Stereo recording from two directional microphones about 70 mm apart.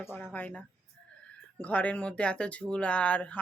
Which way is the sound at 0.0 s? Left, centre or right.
Left.